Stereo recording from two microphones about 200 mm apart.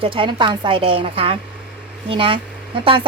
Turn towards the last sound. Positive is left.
turn(degrees=-25)  # may be behind; listen again after turning